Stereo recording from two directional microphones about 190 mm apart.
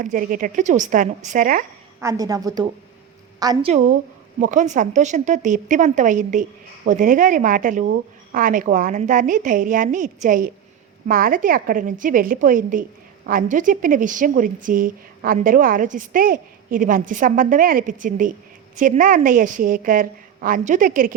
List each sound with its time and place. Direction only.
0.0 s a woman's voice: 45° right (ahead or behind)
2.0 s a woman's voice: 15° right (ahead or behind)
3.7 s a woman's voice: 40° right (ahead or behind)